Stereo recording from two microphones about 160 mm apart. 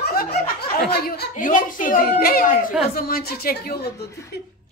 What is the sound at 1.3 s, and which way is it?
A woman's voice, 55° left (ahead or behind).